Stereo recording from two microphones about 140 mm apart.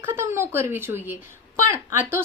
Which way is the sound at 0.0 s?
15° right (ahead or behind).